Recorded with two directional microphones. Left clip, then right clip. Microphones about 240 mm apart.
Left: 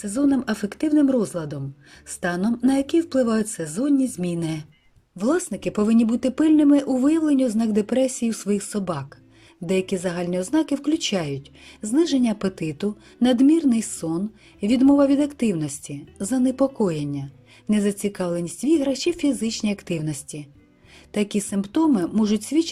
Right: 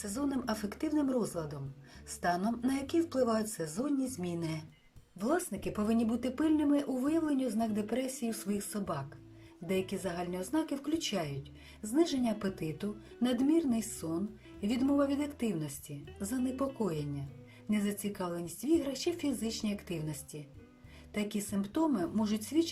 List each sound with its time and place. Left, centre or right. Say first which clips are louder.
0.0 s speech: left 13 dB; left